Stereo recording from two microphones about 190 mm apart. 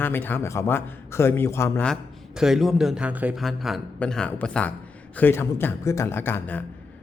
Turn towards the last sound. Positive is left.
turn(degrees=10)  # may be behind; listen again after turning